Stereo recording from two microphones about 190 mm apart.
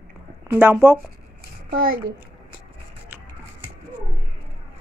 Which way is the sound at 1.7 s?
50° right (ahead or behind).